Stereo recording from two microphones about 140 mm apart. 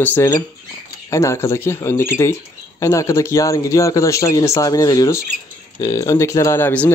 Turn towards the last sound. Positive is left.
turn(degrees=15)  # may be behind; listen again after turning